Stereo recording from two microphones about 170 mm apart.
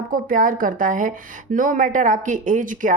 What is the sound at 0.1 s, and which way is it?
A woman's voice, 55° right (ahead or behind).